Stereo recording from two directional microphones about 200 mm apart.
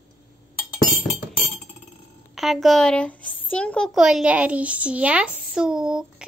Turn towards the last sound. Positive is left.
turn(degrees=-5)  # may be behind; listen again after turning